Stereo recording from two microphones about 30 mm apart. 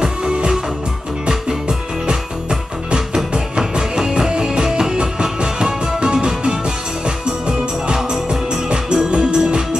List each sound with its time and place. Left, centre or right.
0.0 s music: right
3.5 s music: right